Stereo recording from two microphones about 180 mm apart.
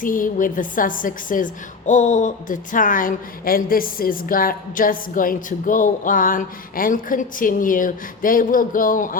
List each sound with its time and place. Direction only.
0.0 s a woman's voice: 50° left (ahead or behind)